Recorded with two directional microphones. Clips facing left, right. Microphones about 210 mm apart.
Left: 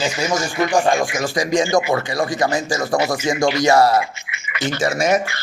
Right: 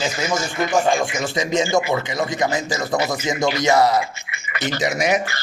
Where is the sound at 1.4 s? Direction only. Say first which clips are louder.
Left 2 dB; 25° right (ahead or behind).